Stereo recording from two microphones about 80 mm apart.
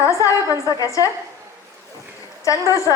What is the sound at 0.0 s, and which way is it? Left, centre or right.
A woman's voice, left.